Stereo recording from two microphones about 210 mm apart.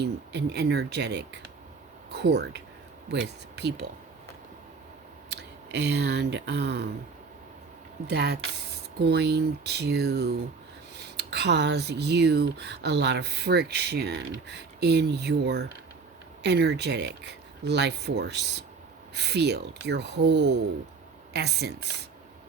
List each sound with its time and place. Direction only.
0.0 s speech: 50° right (ahead or behind)
5.3 s speech: 55° right (ahead or behind)
8.0 s speech: 50° right (ahead or behind)